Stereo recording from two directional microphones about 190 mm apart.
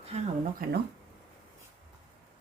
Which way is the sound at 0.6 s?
50° right (ahead or behind).